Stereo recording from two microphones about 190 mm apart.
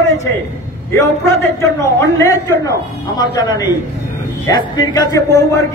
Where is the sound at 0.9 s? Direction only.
15° left (ahead or behind).